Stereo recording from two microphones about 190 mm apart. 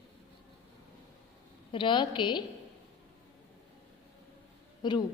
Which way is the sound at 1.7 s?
25° left (ahead or behind).